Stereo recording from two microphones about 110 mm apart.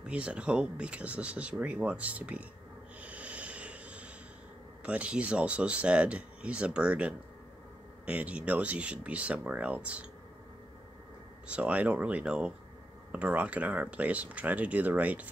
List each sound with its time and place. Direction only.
0.0 s speech: 10° right (ahead or behind)
3.0 s a sound: 10° right (ahead or behind)
4.8 s speech: 10° right (ahead or behind)
11.4 s speech: 10° right (ahead or behind)